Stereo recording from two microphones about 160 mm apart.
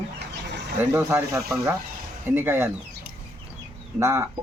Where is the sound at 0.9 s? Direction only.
15° right (ahead or behind).